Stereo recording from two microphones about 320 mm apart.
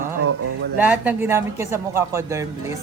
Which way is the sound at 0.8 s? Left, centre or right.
Centre.